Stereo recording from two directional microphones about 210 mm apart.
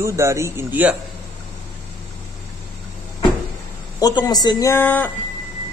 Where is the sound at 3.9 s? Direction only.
15° left (ahead or behind).